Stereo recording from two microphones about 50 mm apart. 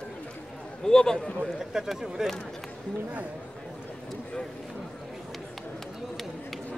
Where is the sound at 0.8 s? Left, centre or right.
Centre.